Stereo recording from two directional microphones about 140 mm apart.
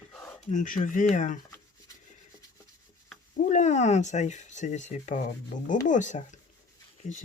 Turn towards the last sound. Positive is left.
turn(degrees=60)  # may be behind; listen again after turning